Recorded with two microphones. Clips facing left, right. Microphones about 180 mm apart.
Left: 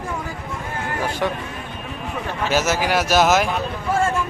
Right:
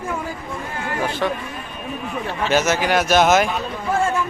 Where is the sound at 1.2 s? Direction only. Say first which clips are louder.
Right 1 dB; 20° left (ahead or behind).